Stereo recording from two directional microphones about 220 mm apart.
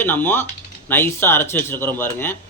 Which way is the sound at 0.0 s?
10° left (ahead or behind).